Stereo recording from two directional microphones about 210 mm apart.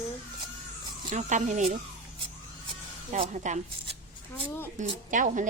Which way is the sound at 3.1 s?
35° right (ahead or behind).